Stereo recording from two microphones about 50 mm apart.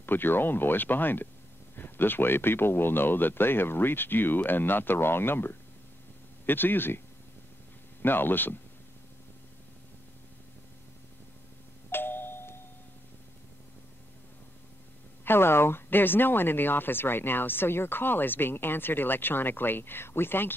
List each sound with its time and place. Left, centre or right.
0.0 s speech: left
8.0 s speech: left
11.9 s doorbell: left
15.2 s speech: left